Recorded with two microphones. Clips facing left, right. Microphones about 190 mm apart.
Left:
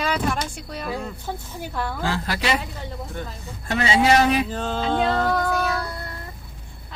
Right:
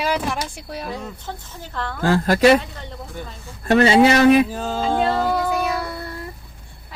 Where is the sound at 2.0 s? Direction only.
45° right (ahead or behind).